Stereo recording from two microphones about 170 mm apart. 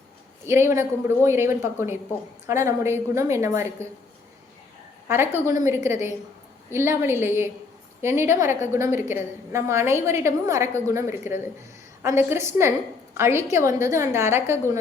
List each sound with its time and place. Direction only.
0.4 s a woman's voice: 15° right (ahead or behind)
5.0 s a woman's voice: 15° right (ahead or behind)